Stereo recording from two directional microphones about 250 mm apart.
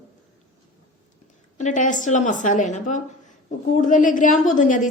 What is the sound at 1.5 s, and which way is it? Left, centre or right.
A woman's voice, left.